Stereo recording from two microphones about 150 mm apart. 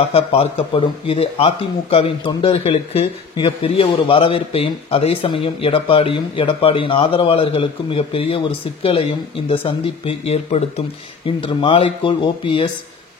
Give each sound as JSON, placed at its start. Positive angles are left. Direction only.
{"t": 0.1, "sound": "a man's voice", "side_deg": 40}